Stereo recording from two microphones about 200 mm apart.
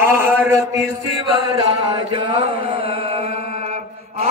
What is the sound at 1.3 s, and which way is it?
Chant, 25° right (ahead or behind).